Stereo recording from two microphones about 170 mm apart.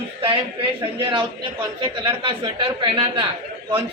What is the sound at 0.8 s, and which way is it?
Speech, 30° right (ahead or behind).